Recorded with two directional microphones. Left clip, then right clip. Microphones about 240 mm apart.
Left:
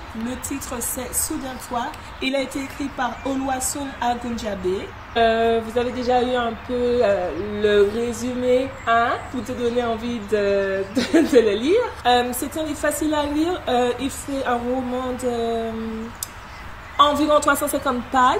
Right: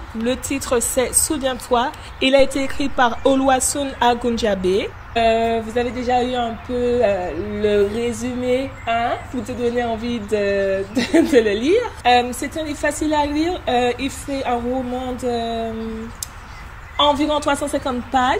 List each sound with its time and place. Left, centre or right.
0.7 s a woman's voice: right
16.9 s speech: centre